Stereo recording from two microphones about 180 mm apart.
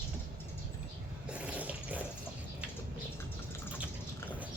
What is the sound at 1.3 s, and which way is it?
Water, 10° right (ahead or behind).